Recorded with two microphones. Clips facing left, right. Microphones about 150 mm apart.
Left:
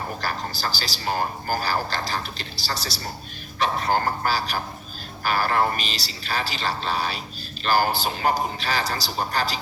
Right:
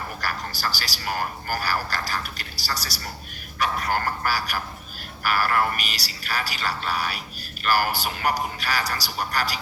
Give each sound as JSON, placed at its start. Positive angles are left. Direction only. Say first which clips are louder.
{"t": 0.2, "sound": "speech", "louder": "left 1 dB", "side_deg": 25}